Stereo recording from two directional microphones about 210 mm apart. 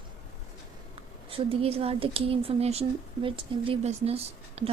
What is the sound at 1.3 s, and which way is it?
Speech, 25° right (ahead or behind).